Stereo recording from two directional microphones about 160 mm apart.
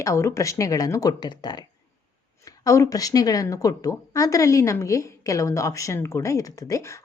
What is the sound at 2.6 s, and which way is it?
A woman's voice, 20° left (ahead or behind).